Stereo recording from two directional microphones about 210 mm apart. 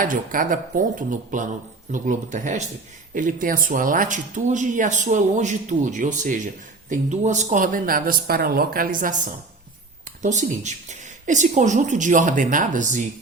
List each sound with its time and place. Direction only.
0.0 s speech: 40° right (ahead or behind)
10.2 s speech: 35° right (ahead or behind)